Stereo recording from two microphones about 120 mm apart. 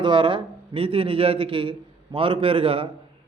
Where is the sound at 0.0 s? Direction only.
45° right (ahead or behind).